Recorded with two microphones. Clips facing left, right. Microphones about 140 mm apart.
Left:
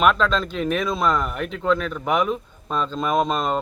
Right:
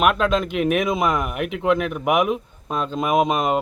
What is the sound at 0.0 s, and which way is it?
A man's voice, 10° right (ahead or behind).